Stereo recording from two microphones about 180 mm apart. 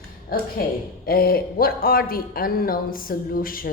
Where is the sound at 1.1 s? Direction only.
55° left (ahead or behind).